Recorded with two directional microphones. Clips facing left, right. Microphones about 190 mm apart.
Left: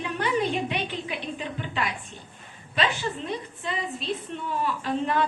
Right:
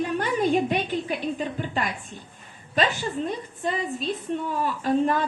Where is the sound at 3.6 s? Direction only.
45° right (ahead or behind).